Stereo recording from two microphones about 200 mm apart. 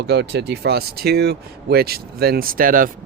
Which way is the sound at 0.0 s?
55° right (ahead or behind).